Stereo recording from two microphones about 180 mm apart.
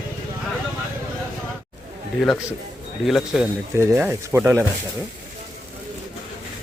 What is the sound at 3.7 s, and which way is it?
Speech, 15° right (ahead or behind).